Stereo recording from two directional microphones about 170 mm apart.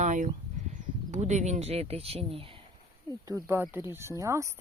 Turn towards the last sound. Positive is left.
turn(degrees=-20)  # may be behind; listen again after turning